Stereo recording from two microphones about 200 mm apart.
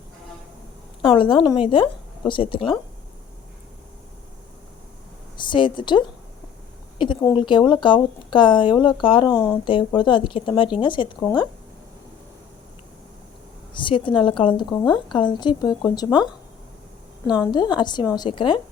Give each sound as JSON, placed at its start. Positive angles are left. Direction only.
{"t": 1.0, "sound": "speech", "side_deg": 25}
{"t": 5.4, "sound": "a woman's voice", "side_deg": 25}
{"t": 7.0, "sound": "speech", "side_deg": 20}
{"t": 13.7, "sound": "speech", "side_deg": 25}
{"t": 17.2, "sound": "speech", "side_deg": 20}